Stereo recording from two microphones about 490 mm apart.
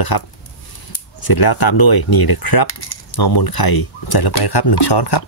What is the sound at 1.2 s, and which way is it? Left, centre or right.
Speech, left.